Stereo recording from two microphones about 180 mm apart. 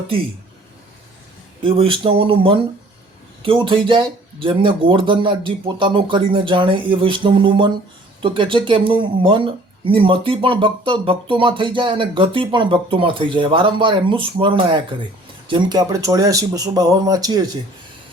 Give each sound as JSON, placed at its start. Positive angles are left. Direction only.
{"t": 1.6, "sound": "speech", "side_deg": -30}